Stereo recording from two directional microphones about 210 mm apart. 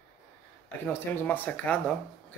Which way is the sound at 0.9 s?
10° left (ahead or behind).